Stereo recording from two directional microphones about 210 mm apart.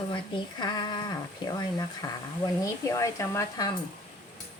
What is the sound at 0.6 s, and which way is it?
Speech, 20° left (ahead or behind).